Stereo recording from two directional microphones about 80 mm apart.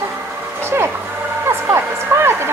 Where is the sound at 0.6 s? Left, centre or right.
Right.